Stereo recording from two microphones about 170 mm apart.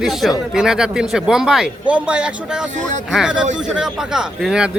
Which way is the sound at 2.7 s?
45° right (ahead or behind).